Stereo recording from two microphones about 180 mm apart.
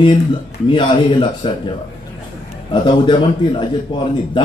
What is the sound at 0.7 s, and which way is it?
Speech, 25° left (ahead or behind).